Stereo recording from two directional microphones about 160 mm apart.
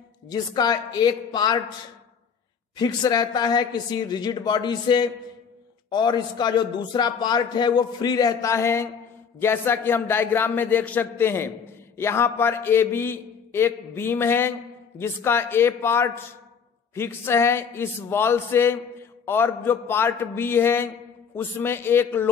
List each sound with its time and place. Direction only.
0.3 s a man's voice: 25° left (ahead or behind)
2.8 s a man's voice: 25° left (ahead or behind)